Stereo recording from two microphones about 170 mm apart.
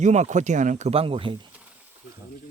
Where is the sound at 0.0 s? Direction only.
45° right (ahead or behind).